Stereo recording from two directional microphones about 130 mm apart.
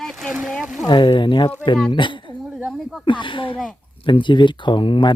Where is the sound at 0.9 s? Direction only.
40° left (ahead or behind).